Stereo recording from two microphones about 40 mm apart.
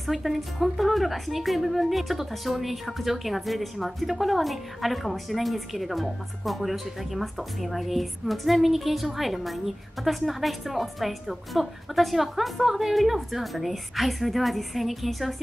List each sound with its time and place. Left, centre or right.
0.0 s a woman's voice: centre